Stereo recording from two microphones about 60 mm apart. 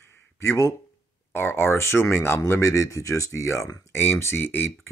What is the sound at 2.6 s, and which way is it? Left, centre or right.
Speech, left.